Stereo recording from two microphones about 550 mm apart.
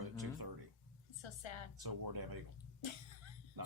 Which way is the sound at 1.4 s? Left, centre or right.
Left.